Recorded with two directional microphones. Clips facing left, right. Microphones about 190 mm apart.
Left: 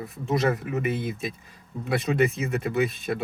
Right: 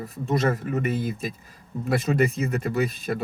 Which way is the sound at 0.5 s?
40° right (ahead or behind).